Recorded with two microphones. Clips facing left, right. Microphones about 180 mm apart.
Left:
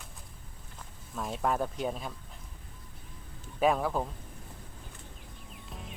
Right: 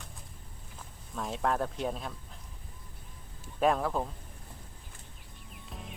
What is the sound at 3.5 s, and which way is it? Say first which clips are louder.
Speech: left 1 dB; centre (ahead or behind).